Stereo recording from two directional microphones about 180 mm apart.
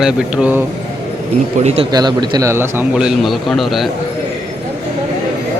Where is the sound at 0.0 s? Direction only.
5° right (ahead or behind).